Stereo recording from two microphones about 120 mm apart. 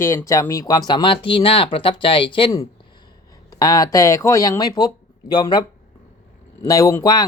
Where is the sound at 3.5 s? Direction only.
35° left (ahead or behind).